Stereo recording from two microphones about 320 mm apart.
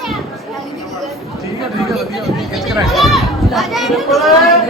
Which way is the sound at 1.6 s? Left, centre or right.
Centre.